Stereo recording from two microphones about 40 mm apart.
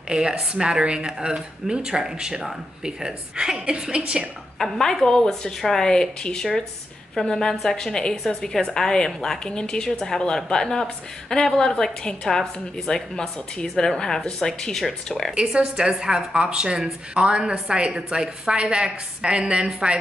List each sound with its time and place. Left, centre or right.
0.1 s speech: centre
4.6 s a woman's voice: centre
15.5 s speech: centre